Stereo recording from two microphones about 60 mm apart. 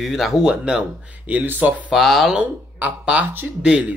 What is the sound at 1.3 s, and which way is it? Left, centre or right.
Speech, right.